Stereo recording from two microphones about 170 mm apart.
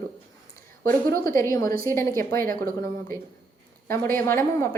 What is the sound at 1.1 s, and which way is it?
Speech, 60° right (ahead or behind).